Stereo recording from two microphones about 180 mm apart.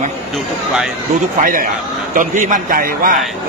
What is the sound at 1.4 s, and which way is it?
A man's voice, 50° right (ahead or behind).